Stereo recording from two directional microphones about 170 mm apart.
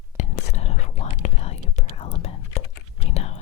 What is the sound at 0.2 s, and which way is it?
Whispering, 40° left (ahead or behind).